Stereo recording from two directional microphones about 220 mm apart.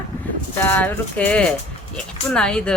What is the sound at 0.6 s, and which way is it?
Speech, 5° left (ahead or behind).